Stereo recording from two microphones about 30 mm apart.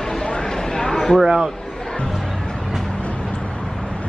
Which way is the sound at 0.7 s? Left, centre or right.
Centre.